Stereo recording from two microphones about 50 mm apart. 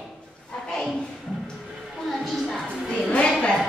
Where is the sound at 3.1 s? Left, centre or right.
Left.